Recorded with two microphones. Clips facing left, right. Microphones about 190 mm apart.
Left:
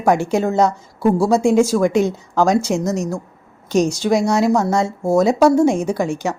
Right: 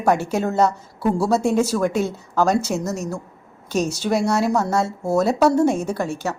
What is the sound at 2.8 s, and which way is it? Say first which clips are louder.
A woman's voice: left 5 dB; 5° right (ahead or behind).